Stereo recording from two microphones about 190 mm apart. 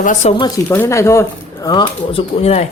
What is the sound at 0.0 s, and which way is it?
Speech, 40° left (ahead or behind).